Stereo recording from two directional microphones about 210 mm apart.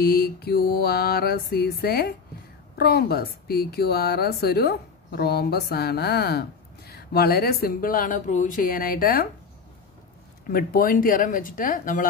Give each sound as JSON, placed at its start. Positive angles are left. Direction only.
{"t": 0.0, "sound": "speech", "side_deg": 45}
{"t": 10.5, "sound": "speech", "side_deg": 45}